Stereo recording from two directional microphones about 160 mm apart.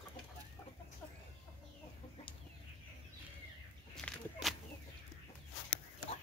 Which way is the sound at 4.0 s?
Centre (ahead or behind).